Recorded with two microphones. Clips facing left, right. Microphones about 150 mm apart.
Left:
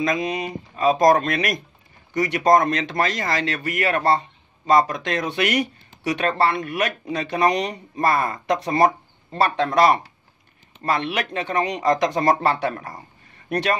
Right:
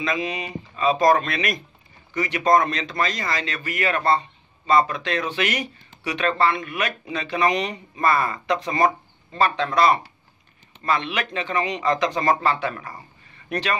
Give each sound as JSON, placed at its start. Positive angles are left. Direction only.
{"t": 0.0, "sound": "speech", "side_deg": 45}
{"t": 11.5, "sound": "speech", "side_deg": 45}